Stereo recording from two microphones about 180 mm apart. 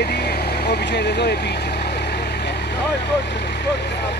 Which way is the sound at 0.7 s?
65° left (ahead or behind).